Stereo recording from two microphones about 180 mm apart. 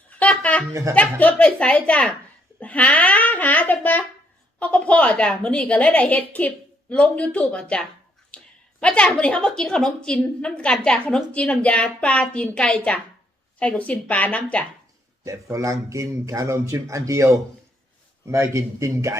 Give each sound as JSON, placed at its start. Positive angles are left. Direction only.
{"t": 0.2, "sound": "a sound", "side_deg": 10}
{"t": 0.7, "sound": "speech", "side_deg": -15}
{"t": 0.9, "sound": "a woman's voice", "side_deg": 10}
{"t": 8.3, "sound": "a sound", "side_deg": 5}
{"t": 8.8, "sound": "a woman's voice", "side_deg": 5}
{"t": 15.2, "sound": "speech", "side_deg": -15}